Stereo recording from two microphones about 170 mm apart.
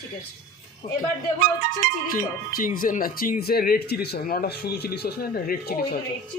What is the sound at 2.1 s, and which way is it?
Speech, 55° left (ahead or behind).